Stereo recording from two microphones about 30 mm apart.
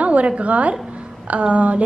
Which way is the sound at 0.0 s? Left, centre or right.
Right.